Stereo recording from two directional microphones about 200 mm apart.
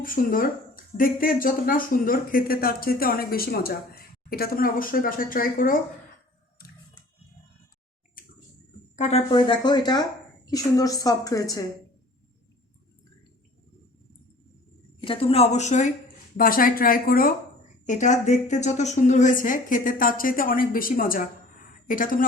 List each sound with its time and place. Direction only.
0.0 s speech: 45° left (ahead or behind)
6.6 s a sound: 50° left (ahead or behind)
8.2 s a sound: 45° left (ahead or behind)
9.0 s a woman's voice: 35° left (ahead or behind); by 11.6 s 15° left (ahead or behind)
15.0 s speech: 25° left (ahead or behind)
16.4 s speech: 45° left (ahead or behind)